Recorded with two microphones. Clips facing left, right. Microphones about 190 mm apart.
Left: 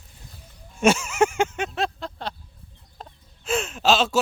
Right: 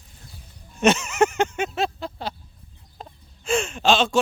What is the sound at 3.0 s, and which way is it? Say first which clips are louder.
Chicken: right 1 dB; centre (ahead or behind).